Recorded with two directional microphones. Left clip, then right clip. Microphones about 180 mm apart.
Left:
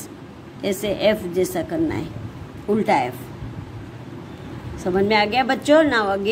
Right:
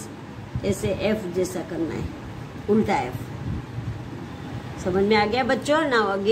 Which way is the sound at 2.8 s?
40° left (ahead or behind).